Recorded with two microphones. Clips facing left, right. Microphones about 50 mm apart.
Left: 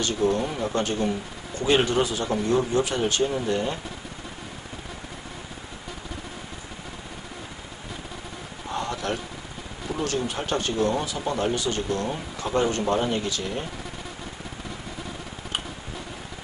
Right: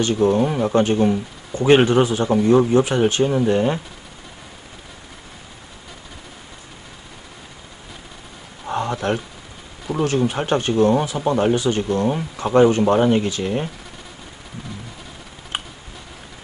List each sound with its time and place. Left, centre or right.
0.0 s speech: right
8.6 s a sound: right
10.0 s speech: right